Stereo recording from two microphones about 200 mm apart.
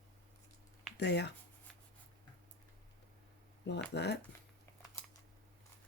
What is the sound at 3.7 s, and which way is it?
Speech, 60° left (ahead or behind).